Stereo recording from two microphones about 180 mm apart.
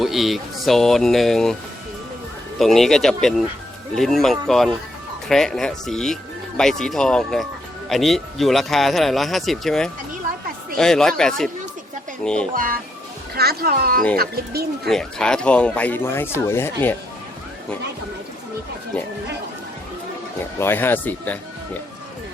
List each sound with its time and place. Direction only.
0.0 s speech: centre (ahead or behind)
2.6 s speech: centre (ahead or behind)
12.5 s speech: 50° right (ahead or behind)
14.8 s speech: 5° left (ahead or behind)
20.6 s speech: 10° left (ahead or behind)